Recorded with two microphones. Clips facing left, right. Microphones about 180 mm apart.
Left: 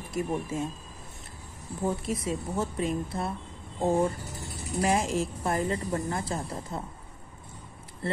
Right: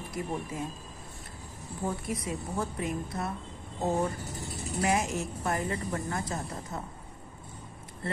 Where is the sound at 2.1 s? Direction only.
25° left (ahead or behind).